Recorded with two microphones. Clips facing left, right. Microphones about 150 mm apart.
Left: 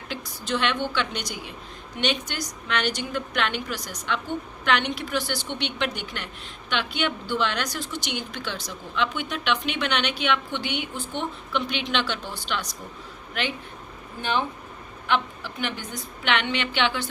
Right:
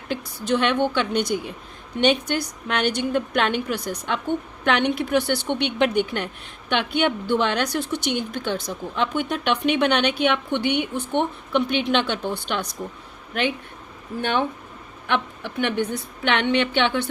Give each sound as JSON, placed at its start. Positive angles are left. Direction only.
{"t": 0.1, "sound": "a woman's voice", "side_deg": -60}
{"t": 15.0, "sound": "a woman's voice", "side_deg": -60}